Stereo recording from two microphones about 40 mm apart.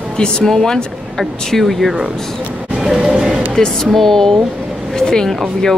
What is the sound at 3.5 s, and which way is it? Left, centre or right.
Speech, centre.